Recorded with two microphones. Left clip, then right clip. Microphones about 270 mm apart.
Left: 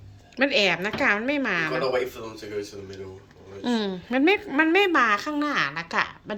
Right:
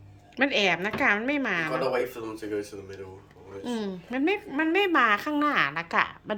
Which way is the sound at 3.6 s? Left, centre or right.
Centre.